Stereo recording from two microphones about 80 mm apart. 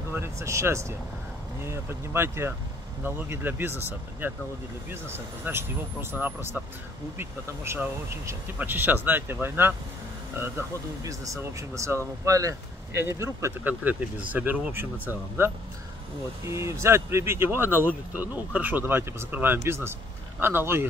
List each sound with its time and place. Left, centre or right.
0.1 s speech: right
7.2 s speech: right
13.7 s speech: right